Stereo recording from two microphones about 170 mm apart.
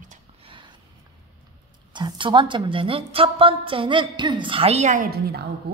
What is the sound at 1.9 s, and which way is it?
A woman's voice, 25° right (ahead or behind).